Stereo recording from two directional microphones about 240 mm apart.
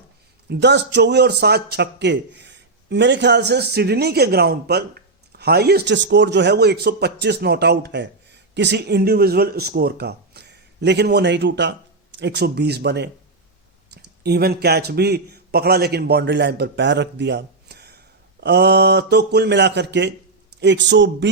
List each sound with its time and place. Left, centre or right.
0.4 s a man's voice: right